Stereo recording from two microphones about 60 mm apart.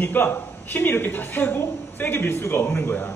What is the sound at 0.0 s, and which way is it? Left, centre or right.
A man's voice, left.